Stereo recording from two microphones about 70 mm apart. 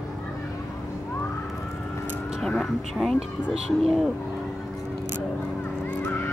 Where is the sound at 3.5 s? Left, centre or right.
Centre.